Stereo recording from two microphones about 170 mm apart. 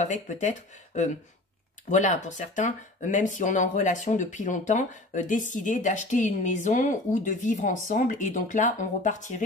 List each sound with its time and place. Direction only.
0.0 s speech: 45° left (ahead or behind)